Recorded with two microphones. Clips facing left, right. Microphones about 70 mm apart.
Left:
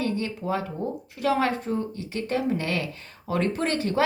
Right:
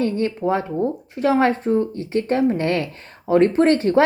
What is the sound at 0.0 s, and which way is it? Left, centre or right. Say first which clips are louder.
Speech: right 7 dB; right.